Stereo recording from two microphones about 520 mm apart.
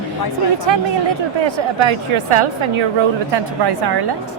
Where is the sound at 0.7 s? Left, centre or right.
Right.